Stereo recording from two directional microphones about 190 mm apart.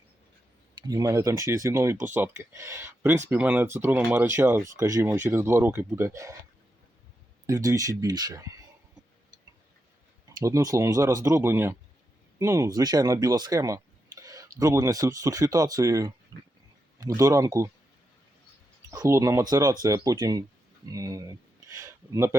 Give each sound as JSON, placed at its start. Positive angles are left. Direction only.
{"t": 0.8, "sound": "speech", "side_deg": -20}
{"t": 7.4, "sound": "speech", "side_deg": -15}
{"t": 10.2, "sound": "speech", "side_deg": -15}
{"t": 17.2, "sound": "speech", "side_deg": -20}
{"t": 18.9, "sound": "speech", "side_deg": -15}